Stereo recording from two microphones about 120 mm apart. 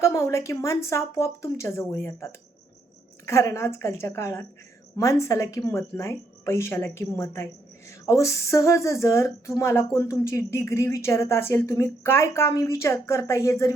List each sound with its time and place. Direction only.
0.0 s a woman's voice: 25° left (ahead or behind)